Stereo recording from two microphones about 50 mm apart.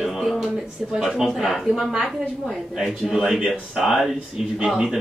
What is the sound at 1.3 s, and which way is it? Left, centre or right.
A man's voice, centre.